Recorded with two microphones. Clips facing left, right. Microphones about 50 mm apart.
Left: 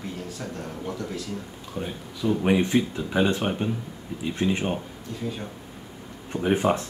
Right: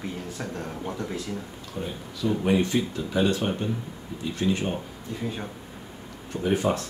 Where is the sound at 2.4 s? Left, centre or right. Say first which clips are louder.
Left 2 dB; left.